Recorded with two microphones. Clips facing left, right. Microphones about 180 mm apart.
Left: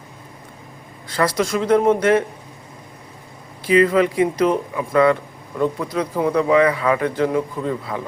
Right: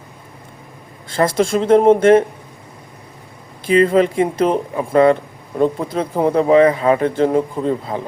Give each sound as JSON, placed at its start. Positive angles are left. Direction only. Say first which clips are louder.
{"t": 1.1, "sound": "speech", "louder": "right 4 dB", "side_deg": -25}
{"t": 3.7, "sound": "speech", "louder": "right 2 dB", "side_deg": -25}